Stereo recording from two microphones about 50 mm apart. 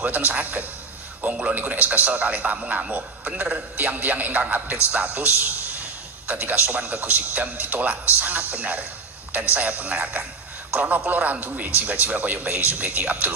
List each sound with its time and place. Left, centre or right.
0.0 s a man's voice: right